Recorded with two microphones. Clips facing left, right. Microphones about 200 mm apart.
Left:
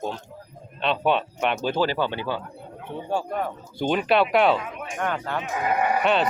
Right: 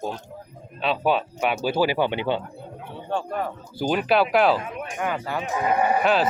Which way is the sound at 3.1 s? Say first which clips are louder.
Left 1 dB; 10° left (ahead or behind).